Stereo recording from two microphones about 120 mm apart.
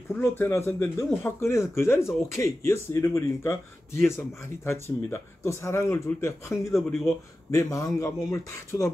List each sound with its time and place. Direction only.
0.2 s speech: 20° left (ahead or behind)
6.7 s speech: centre (ahead or behind)
7.5 s speech: 25° left (ahead or behind)